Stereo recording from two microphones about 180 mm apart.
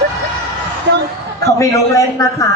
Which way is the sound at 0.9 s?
80° right.